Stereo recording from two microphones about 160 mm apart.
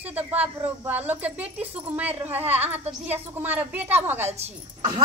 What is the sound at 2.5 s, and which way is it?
Speech, 40° right (ahead or behind).